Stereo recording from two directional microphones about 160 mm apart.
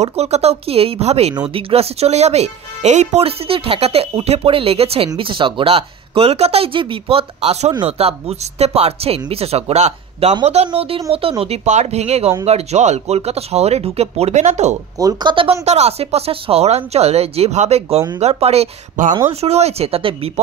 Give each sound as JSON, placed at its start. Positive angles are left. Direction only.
{"t": 0.0, "sound": "speech", "side_deg": -40}
{"t": 15.0, "sound": "speech", "side_deg": -25}